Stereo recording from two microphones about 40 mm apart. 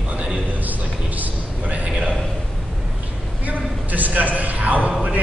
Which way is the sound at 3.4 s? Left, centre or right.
Right.